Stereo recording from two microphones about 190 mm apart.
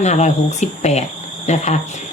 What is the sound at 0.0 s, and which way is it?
Speech, 40° left (ahead or behind).